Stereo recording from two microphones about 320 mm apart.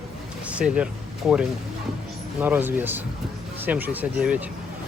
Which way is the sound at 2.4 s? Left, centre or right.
Centre.